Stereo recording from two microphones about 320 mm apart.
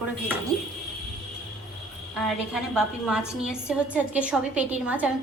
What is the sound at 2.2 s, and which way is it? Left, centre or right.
A woman's voice, centre.